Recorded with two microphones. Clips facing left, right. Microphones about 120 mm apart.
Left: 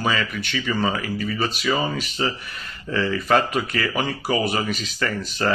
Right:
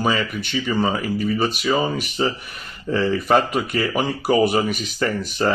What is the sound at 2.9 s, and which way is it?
Speech, 20° right (ahead or behind).